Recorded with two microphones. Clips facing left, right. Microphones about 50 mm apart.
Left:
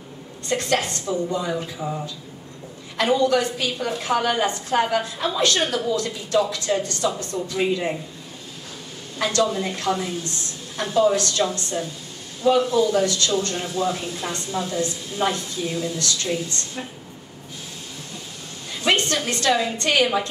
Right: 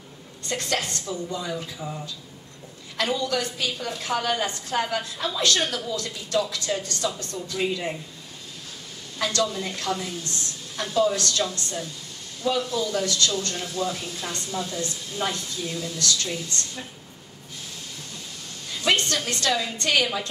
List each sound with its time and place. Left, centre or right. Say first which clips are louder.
0.5 s a woman's voice: left 5 dB; left
9.2 s a woman's voice: left 4 dB; left
18.8 s a woman's voice: left 2 dB; left